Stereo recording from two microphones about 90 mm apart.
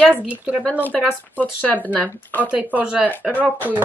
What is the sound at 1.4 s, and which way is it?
Speech, 20° left (ahead or behind).